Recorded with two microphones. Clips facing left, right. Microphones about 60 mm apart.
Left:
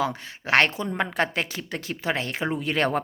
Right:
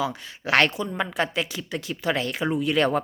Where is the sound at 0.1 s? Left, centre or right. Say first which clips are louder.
Left 1 dB; left.